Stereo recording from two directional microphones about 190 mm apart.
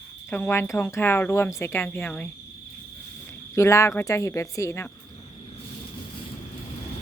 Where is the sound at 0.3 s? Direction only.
10° left (ahead or behind).